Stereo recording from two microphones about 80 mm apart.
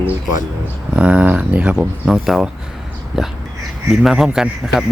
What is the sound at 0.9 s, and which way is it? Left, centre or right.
Speech, centre.